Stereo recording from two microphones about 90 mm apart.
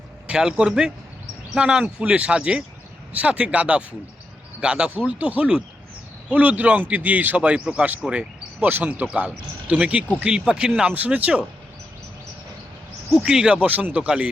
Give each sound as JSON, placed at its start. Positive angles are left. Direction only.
{"t": 0.3, "sound": "a man's voice", "side_deg": -10}
{"t": 13.2, "sound": "a man's voice", "side_deg": -5}